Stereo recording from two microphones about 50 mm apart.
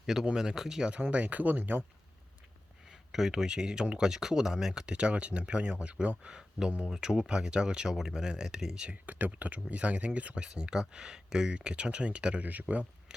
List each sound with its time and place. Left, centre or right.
0.0 s speech: centre
1.1 s speech: right
2.9 s speech: centre
8.9 s speech: right